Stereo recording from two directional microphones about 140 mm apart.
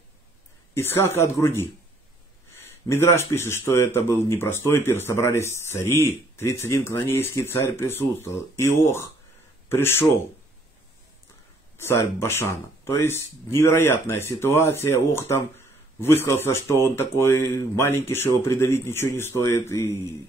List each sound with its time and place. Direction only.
0.7 s speech: 15° left (ahead or behind)
2.9 s speech: 15° left (ahead or behind)
11.9 s speech: 20° left (ahead or behind)